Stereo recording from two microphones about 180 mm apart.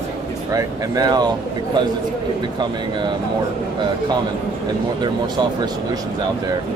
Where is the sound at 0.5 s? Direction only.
20° right (ahead or behind).